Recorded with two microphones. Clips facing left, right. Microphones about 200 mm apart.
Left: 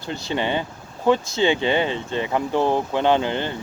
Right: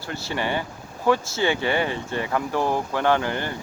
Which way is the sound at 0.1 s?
20° left (ahead or behind).